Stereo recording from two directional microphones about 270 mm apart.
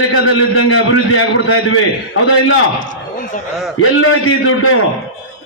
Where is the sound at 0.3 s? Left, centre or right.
Left.